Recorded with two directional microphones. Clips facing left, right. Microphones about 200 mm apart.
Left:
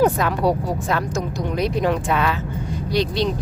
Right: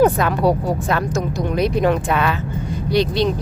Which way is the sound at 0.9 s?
60° right (ahead or behind).